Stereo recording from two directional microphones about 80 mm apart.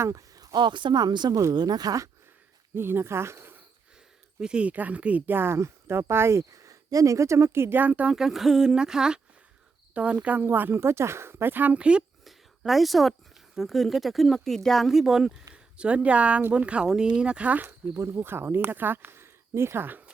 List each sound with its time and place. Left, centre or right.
0.0 s speech: right
2.7 s speech: right
4.4 s speech: centre
8.1 s speech: centre
12.2 s a sound: centre
13.6 s speech: centre; by 20.1 s right